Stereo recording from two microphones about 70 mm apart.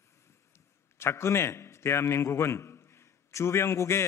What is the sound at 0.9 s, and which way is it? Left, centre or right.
A man's voice, left.